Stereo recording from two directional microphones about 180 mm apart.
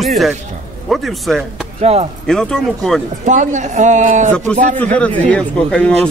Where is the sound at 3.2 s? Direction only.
45° right (ahead or behind).